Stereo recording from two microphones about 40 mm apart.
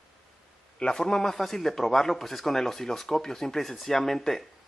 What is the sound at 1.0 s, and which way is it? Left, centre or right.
Speech, centre.